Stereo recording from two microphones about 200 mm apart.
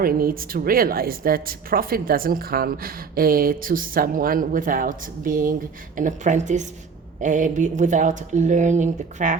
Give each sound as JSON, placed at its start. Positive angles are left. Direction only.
{"t": 0.0, "sound": "a woman's voice", "side_deg": -45}